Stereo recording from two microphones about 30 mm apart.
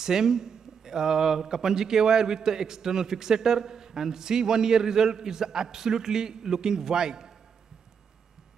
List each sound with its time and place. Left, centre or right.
0.0 s speech: centre